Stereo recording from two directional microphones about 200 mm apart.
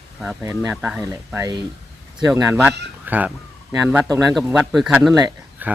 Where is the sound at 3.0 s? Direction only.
10° right (ahead or behind).